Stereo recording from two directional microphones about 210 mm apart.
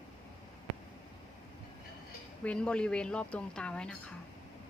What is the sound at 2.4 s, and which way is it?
A woman's voice, 5° left (ahead or behind).